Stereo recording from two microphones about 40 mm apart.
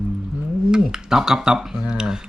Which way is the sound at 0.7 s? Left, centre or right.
Centre.